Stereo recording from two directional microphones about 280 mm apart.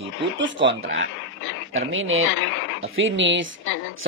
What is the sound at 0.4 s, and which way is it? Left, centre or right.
Speech, right.